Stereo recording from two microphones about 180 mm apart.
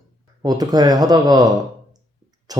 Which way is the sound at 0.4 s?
20° right (ahead or behind).